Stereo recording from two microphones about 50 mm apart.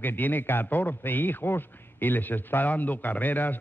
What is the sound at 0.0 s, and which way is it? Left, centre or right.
A man's voice, left.